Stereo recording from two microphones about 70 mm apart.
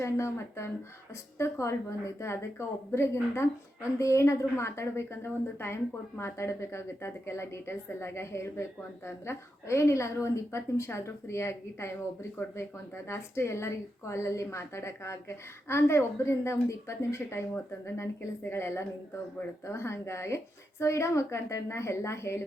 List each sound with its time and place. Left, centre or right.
0.0 s a woman's voice: left
13.1 s a woman's voice: left